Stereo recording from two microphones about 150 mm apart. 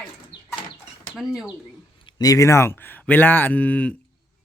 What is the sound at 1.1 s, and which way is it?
Speech, 5° right (ahead or behind).